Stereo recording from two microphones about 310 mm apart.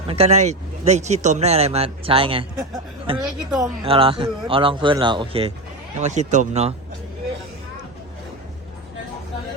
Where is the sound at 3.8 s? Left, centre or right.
Centre.